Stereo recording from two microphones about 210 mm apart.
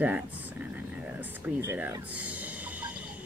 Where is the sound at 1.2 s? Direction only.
10° right (ahead or behind).